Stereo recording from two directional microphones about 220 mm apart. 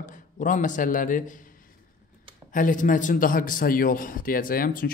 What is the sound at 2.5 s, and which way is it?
A man's voice, 35° left (ahead or behind).